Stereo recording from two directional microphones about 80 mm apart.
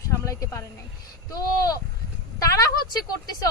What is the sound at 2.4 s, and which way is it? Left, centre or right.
Speech, left.